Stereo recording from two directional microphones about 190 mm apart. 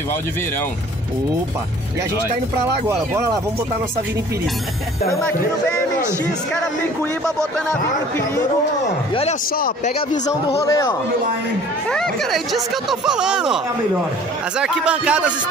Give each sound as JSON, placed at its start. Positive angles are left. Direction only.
{"t": 9.9, "sound": "speech", "side_deg": 30}
{"t": 10.6, "sound": "a man's voice", "side_deg": 15}
{"t": 11.9, "sound": "speech", "side_deg": 0}
{"t": 14.6, "sound": "speech", "side_deg": -5}